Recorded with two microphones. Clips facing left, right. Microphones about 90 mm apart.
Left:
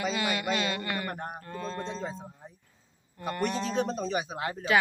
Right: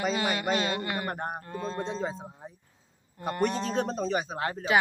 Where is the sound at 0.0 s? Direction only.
35° right (ahead or behind).